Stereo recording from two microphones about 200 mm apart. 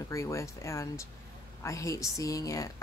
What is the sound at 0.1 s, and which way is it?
A woman's voice, 15° left (ahead or behind).